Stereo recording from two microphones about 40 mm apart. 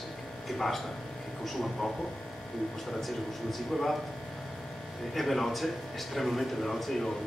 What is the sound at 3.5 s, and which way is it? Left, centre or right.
Speech, centre.